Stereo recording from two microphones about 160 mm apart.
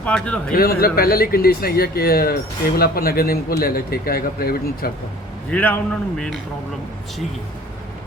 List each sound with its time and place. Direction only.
0.0 s a man's voice: 5° left (ahead or behind)
0.5 s speech: 70° left (ahead or behind)
5.5 s a man's voice: 10° left (ahead or behind)